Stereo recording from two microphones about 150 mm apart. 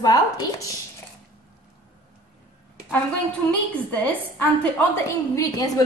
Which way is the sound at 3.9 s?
10° left (ahead or behind).